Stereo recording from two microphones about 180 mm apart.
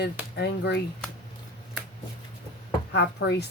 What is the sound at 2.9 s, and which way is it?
Speech, 70° left (ahead or behind).